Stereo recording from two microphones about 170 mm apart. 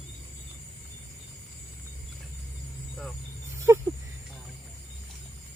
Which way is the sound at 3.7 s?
20° right (ahead or behind).